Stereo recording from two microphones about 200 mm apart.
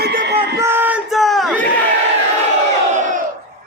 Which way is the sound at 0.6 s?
10° right (ahead or behind).